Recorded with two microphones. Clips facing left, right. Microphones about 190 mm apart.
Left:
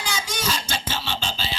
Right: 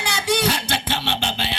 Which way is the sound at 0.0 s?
65° right (ahead or behind).